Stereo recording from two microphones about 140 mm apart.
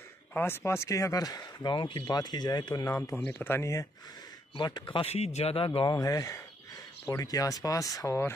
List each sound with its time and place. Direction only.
0.3 s speech: 15° left (ahead or behind)
4.6 s speech: 35° left (ahead or behind)
5.9 s speech: 25° left (ahead or behind)